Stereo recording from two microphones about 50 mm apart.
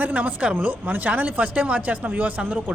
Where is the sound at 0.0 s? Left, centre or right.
Right.